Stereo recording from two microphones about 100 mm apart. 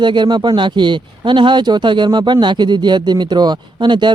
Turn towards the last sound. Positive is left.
turn(degrees=-50)  # may be behind; listen again after turning